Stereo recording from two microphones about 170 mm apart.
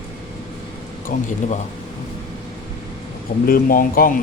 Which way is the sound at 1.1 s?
45° left (ahead or behind).